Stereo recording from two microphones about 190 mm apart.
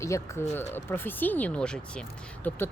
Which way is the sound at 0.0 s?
15° left (ahead or behind).